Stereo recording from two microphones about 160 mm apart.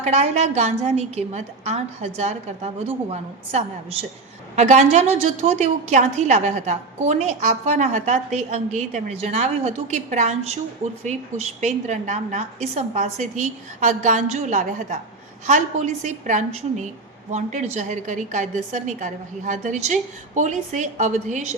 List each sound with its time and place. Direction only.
0.0 s a woman's voice: 45° right (ahead or behind)